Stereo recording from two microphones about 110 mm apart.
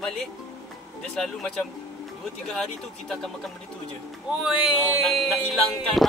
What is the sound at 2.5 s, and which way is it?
Speech, 5° left (ahead or behind).